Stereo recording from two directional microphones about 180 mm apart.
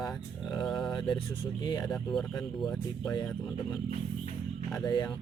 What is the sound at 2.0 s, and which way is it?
Speech, centre (ahead or behind).